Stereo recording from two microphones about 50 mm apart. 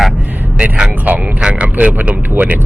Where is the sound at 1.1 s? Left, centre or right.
Right.